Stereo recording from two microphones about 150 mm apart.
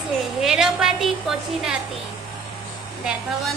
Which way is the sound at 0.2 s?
5° right (ahead or behind).